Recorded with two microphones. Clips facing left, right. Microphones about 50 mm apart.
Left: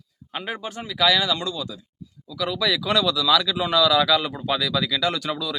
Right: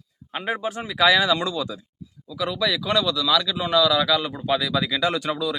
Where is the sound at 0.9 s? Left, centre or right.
Right.